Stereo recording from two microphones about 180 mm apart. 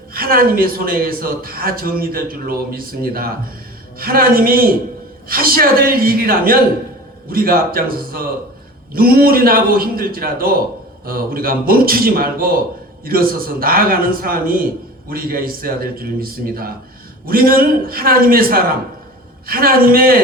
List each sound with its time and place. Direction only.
0.1 s a man's voice: 55° right (ahead or behind)